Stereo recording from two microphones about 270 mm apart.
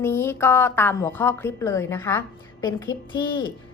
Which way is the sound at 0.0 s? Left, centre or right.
Centre.